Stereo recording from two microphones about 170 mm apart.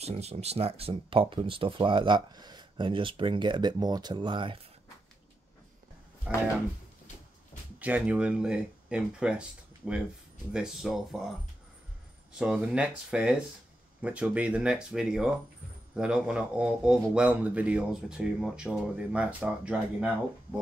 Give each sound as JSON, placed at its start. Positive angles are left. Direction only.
{"t": 0.0, "sound": "speech", "side_deg": -40}
{"t": 6.3, "sound": "speech", "side_deg": -5}
{"t": 7.8, "sound": "speech", "side_deg": -10}
{"t": 10.5, "sound": "speech", "side_deg": -5}
{"t": 12.4, "sound": "speech", "side_deg": -5}